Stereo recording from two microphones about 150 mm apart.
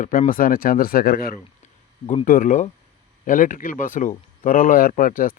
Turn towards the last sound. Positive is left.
turn(degrees=70)  # may be behind; listen again after turning